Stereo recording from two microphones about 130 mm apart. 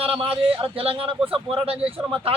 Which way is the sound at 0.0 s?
45° right (ahead or behind).